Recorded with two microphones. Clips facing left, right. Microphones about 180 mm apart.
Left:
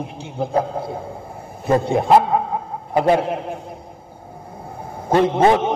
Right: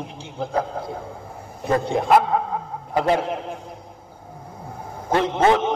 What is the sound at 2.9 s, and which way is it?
Speech, 15° left (ahead or behind).